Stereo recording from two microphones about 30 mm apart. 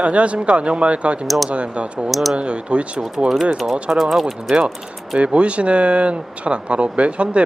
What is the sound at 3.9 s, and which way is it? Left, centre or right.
Speech, centre.